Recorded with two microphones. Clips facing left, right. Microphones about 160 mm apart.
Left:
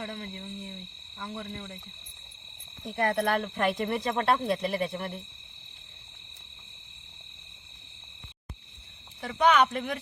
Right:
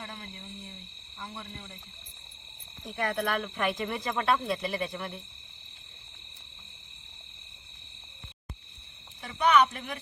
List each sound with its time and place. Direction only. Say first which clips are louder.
0.0 s speech: left 6 dB; 70° left (ahead or behind)
1.2 s frog: left 5 dB; 60° left (ahead or behind)
2.9 s speech: left 4 dB; 55° left (ahead or behind)
3.3 s speech: left 3 dB; 35° left (ahead or behind)
3.7 s speech: left 3 dB; 50° left (ahead or behind)
9.2 s speech: left 1 dB; 75° left (ahead or behind)